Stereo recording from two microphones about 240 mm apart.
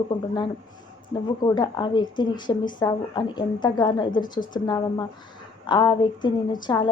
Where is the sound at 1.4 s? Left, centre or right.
Centre.